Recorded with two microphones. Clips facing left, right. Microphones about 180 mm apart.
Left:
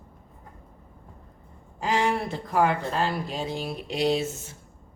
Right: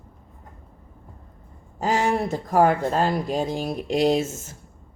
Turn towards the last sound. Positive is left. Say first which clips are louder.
# right 4 dB
turn(degrees=-45)  # may be behind; listen again after turning